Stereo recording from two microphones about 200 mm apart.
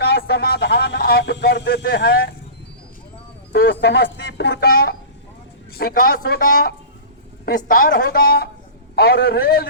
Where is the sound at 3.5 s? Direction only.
55° left (ahead or behind).